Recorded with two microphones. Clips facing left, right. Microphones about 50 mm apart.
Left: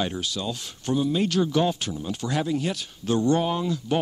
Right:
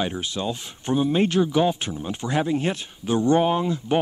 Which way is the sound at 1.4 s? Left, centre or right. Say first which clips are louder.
Right 2 dB; centre.